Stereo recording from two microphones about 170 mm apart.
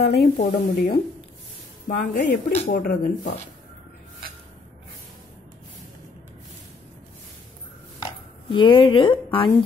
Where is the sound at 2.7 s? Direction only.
60° left (ahead or behind).